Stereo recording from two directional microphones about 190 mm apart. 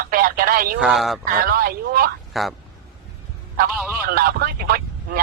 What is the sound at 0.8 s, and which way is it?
Speech, centre (ahead or behind).